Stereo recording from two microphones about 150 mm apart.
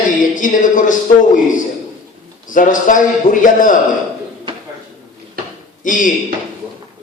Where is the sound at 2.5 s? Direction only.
60° left (ahead or behind).